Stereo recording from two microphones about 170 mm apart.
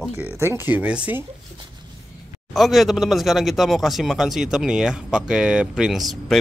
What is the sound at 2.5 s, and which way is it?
Speech, centre (ahead or behind).